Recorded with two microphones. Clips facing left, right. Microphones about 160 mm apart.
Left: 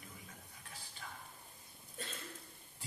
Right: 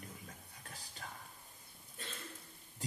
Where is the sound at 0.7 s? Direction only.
40° right (ahead or behind).